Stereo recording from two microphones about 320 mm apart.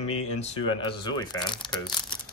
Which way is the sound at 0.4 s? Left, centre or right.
Centre.